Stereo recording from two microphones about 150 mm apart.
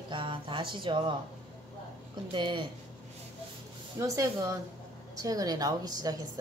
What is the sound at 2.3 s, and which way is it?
Speech, 30° right (ahead or behind).